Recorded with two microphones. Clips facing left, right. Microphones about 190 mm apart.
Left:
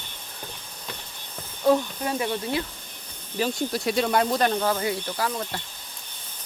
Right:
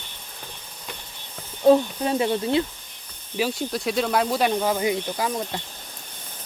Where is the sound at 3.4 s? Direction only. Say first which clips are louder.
Right 1 dB; 5° right (ahead or behind).